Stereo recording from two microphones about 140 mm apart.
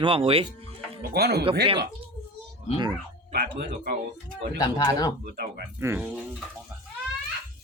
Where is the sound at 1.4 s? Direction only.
40° right (ahead or behind).